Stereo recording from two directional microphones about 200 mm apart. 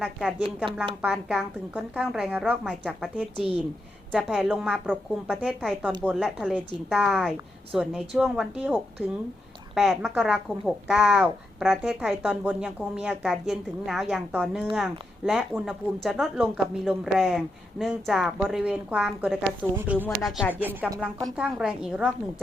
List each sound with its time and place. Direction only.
0.0 s speech: 5° right (ahead or behind)
3.3 s a woman's voice: 30° right (ahead or behind)
4.1 s speech: centre (ahead or behind)